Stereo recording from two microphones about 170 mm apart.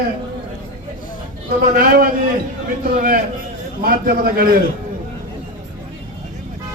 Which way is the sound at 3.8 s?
60° right (ahead or behind).